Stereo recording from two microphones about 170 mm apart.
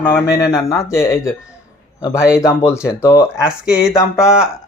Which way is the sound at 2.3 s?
15° left (ahead or behind).